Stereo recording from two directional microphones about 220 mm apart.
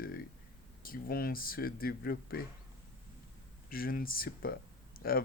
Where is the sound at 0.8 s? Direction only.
40° left (ahead or behind).